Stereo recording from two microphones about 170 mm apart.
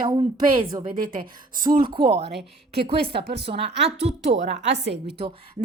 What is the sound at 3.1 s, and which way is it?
Speech, 75° right (ahead or behind).